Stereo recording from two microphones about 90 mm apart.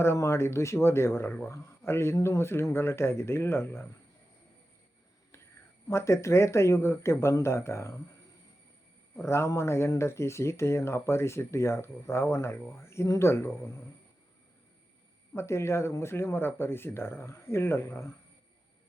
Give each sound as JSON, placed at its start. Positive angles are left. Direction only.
{"t": 0.0, "sound": "speech", "side_deg": 30}
{"t": 5.9, "sound": "speech", "side_deg": 30}
{"t": 9.1, "sound": "speech", "side_deg": 30}
{"t": 15.4, "sound": "speech", "side_deg": 30}